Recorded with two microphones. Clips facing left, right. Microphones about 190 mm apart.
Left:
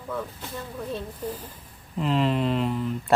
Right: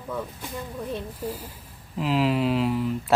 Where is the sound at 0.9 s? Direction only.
10° right (ahead or behind).